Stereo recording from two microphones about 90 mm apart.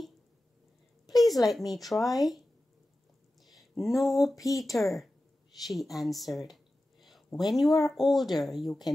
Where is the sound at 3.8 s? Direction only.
Centre (ahead or behind).